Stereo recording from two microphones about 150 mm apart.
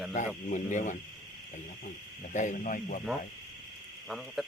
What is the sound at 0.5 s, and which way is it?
Speech, 55° left (ahead or behind).